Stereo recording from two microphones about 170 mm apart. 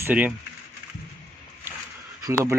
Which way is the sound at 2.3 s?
15° right (ahead or behind).